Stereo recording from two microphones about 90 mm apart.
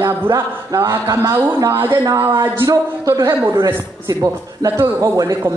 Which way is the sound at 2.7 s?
35° right (ahead or behind).